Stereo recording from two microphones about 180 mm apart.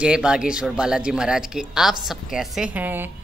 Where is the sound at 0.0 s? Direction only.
5° right (ahead or behind).